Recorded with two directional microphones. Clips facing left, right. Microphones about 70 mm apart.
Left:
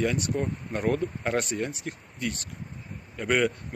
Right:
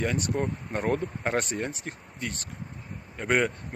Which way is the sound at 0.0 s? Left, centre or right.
Right.